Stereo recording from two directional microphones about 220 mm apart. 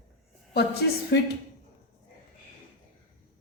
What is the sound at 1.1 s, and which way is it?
Speech, 50° left (ahead or behind).